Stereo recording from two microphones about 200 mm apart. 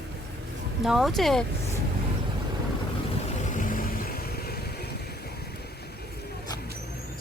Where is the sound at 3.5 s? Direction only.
40° left (ahead or behind).